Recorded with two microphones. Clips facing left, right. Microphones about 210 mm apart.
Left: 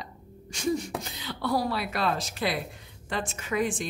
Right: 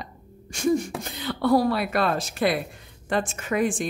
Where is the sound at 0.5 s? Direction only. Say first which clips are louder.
Right 5 dB; 50° right (ahead or behind).